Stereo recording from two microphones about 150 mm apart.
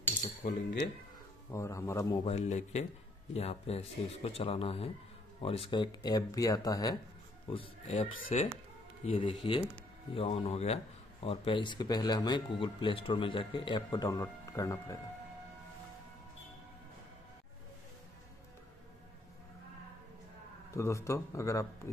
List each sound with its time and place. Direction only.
0.4 s speech: 70° left (ahead or behind)
1.5 s speech: 20° left (ahead or behind)
2.2 s speech: 45° left (ahead or behind); by 7.0 s 25° left (ahead or behind)
7.4 s speech: 35° left (ahead or behind); by 15.0 s 20° left (ahead or behind)
20.7 s speech: 20° left (ahead or behind)